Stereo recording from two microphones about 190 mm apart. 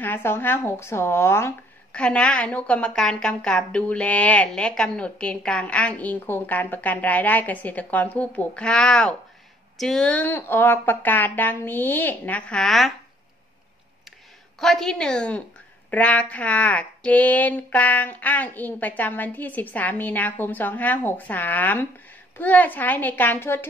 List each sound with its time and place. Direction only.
0.0 s speech: 10° left (ahead or behind)
14.6 s a woman's voice: centre (ahead or behind)